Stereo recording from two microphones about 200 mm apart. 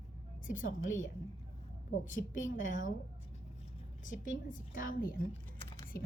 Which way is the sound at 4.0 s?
40° left (ahead or behind).